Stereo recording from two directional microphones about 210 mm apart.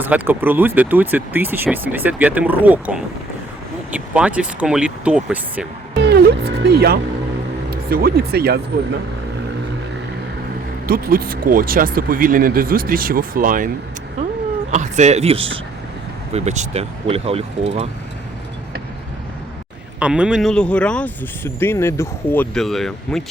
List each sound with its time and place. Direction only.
0.0 s speech: 10° right (ahead or behind)
6.0 s speech: 50° right (ahead or behind)
10.8 s speech: 45° right (ahead or behind)
14.7 s speech: 35° right (ahead or behind)
20.0 s speech: 5° right (ahead or behind)